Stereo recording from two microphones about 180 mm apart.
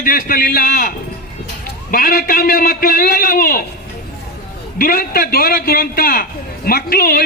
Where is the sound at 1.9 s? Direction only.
55° left (ahead or behind).